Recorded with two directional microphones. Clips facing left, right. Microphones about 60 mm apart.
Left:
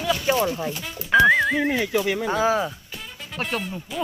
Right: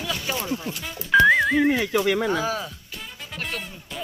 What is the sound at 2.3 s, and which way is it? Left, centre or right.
Speech, left.